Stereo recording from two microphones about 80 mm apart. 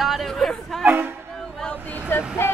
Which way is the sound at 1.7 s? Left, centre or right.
Left.